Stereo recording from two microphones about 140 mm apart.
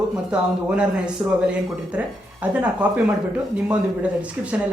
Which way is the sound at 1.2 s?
20° right (ahead or behind).